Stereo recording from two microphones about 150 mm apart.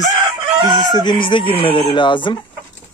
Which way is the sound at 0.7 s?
30° left (ahead or behind).